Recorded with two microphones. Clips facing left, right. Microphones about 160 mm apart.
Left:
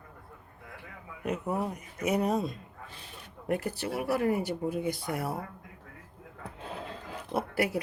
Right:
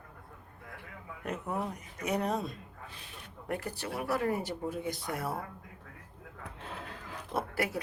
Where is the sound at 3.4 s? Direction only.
20° left (ahead or behind).